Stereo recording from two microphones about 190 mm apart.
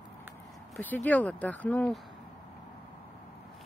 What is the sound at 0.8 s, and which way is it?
Speech, 10° left (ahead or behind).